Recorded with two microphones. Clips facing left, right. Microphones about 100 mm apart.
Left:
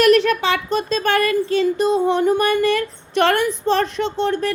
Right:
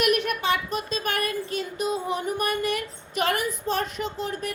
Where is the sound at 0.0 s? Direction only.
90° left.